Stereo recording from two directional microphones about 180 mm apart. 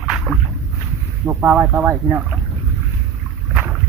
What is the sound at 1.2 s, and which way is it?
Speech, 10° right (ahead or behind).